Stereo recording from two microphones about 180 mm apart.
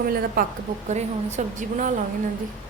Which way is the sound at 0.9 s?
40° right (ahead or behind).